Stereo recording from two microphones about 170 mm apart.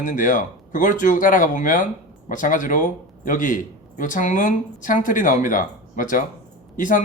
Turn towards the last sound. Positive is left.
turn(degrees=50)  # may be behind; listen again after turning